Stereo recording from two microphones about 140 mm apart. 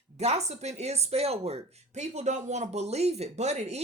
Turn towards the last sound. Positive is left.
turn(degrees=-55)  # may be behind; listen again after turning